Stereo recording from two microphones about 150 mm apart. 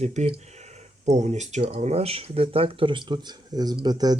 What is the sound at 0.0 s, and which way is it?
Speech, 50° right (ahead or behind).